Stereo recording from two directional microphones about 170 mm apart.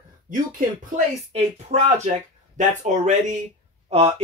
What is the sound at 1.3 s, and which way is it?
Speech, 40° right (ahead or behind).